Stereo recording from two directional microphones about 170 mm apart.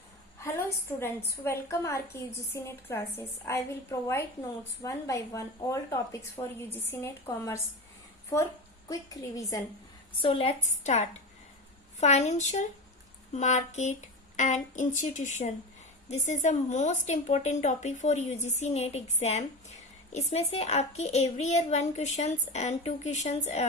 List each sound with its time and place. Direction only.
0.3 s a woman's voice: 15° left (ahead or behind)
4.8 s speech: 20° left (ahead or behind)
8.9 s speech: 20° left (ahead or behind)
10.2 s a woman's voice: 35° left (ahead or behind)